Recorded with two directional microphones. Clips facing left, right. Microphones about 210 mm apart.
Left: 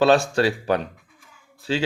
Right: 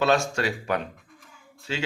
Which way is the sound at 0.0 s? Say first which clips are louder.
Left 6 dB; 30° left (ahead or behind).